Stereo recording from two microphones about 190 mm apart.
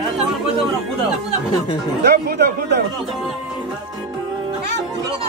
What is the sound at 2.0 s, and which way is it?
Speech, 60° right (ahead or behind).